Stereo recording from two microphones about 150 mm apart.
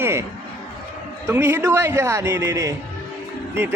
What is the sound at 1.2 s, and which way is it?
Speech, 15° right (ahead or behind).